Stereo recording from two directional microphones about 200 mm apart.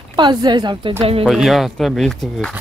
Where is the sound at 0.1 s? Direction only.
20° right (ahead or behind).